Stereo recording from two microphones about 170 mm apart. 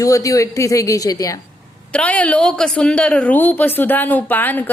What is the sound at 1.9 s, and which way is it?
A woman's voice, 5° left (ahead or behind).